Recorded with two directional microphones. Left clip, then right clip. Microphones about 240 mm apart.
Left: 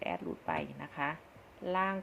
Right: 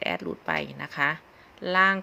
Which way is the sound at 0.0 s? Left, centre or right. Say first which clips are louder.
Right 8 dB; right.